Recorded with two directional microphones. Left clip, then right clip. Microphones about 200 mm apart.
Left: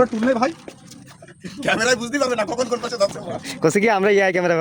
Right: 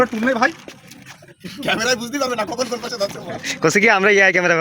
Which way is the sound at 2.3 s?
10° left (ahead or behind).